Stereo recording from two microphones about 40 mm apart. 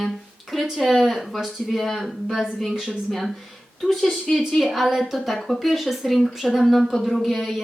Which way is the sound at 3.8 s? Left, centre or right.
Centre.